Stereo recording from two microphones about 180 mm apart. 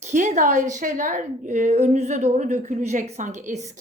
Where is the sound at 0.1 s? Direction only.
45° right (ahead or behind).